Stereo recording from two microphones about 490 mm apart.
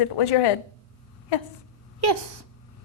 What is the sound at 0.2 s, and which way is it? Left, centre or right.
Speech, left.